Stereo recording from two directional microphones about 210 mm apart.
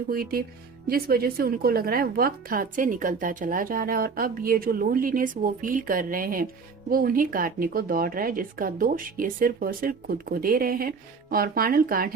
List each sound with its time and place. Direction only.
0.1 s a woman's voice: 45° right (ahead or behind)